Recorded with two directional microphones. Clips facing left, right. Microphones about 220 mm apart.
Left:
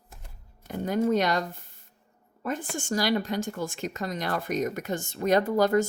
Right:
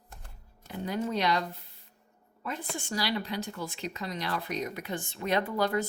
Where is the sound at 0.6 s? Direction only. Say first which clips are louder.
Left 7 dB; 45° left (ahead or behind).